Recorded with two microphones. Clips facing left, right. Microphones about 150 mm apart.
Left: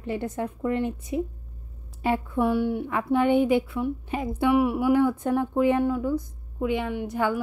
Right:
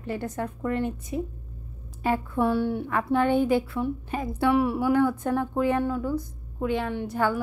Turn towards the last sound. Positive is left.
turn(degrees=15)  # may be behind; listen again after turning